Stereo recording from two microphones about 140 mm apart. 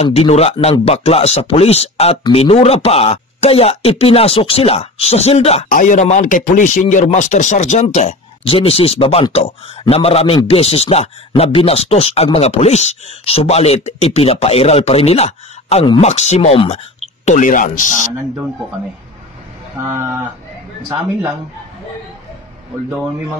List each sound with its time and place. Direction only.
0.0 s a man's voice: 50° left (ahead or behind)
5.7 s speech: 65° left (ahead or behind)
8.5 s a man's voice: 40° left (ahead or behind); by 18.1 s 70° left (ahead or behind)
19.8 s speech: 20° right (ahead or behind)